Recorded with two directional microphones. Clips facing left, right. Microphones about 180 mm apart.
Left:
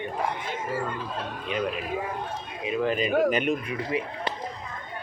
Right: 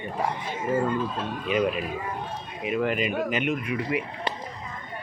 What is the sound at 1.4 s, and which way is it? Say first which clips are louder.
Speech: right 5 dB; 5° right (ahead or behind).